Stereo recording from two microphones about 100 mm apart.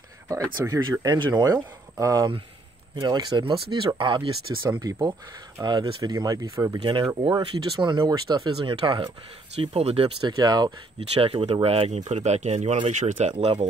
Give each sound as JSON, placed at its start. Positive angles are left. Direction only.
{"t": 0.3, "sound": "speech", "side_deg": -35}
{"t": 3.0, "sound": "speech", "side_deg": -50}
{"t": 6.8, "sound": "speech", "side_deg": -55}
{"t": 9.6, "sound": "speech", "side_deg": -80}
{"t": 10.2, "sound": "speech", "side_deg": -45}
{"t": 11.0, "sound": "speech", "side_deg": -70}